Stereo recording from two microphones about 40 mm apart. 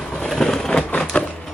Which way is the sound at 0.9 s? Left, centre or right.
Left.